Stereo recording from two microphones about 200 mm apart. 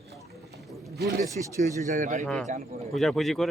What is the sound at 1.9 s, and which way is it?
Speech, 35° right (ahead or behind).